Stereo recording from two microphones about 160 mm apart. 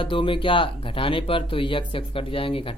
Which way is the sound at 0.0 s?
30° left (ahead or behind).